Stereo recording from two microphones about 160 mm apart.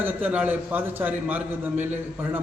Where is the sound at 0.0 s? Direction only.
10° right (ahead or behind).